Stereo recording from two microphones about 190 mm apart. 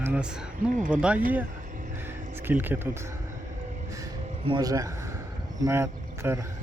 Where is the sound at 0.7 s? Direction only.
45° right (ahead or behind).